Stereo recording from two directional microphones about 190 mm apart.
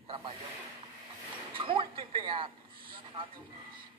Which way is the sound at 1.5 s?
25° right (ahead or behind).